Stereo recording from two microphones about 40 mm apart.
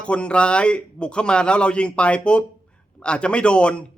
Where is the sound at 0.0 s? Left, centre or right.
Left.